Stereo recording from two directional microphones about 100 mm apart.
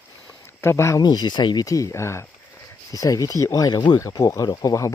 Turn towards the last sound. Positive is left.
turn(degrees=35)  # may be behind; listen again after turning